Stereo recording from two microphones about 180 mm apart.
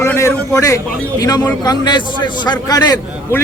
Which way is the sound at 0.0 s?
15° left (ahead or behind).